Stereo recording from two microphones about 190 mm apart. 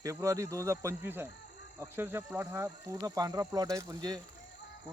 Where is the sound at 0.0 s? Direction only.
15° right (ahead or behind).